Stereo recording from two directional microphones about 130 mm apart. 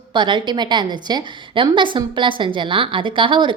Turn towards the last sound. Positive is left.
turn(degrees=-40)  # may be behind; listen again after turning